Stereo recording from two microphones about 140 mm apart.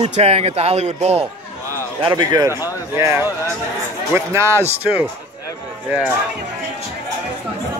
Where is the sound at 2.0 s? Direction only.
35° right (ahead or behind).